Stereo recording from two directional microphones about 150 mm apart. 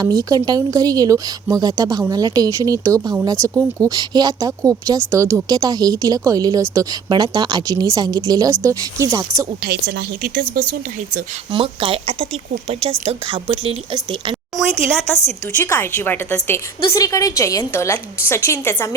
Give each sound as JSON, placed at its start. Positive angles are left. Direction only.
{"t": 0.0, "sound": "speech", "side_deg": -25}
{"t": 9.6, "sound": "a woman's voice", "side_deg": -80}
{"t": 11.5, "sound": "speech", "side_deg": -35}
{"t": 14.5, "sound": "a woman's voice", "side_deg": -5}
{"t": 15.5, "sound": "a woman's voice", "side_deg": 15}